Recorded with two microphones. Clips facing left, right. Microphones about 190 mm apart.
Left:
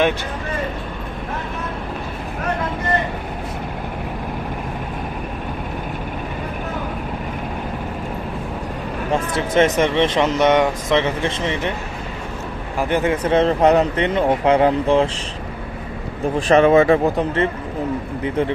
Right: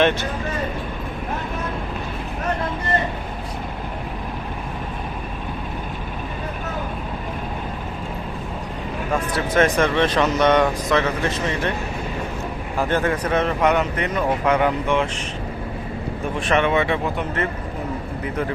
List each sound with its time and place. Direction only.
9.1 s speech: 25° left (ahead or behind)
12.9 s speech: 20° left (ahead or behind)
16.5 s speech: 35° left (ahead or behind)